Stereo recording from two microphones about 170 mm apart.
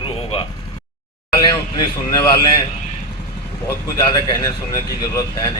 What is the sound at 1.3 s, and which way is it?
Speech, 25° left (ahead or behind).